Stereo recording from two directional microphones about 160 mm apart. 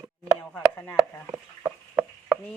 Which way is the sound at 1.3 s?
15° right (ahead or behind).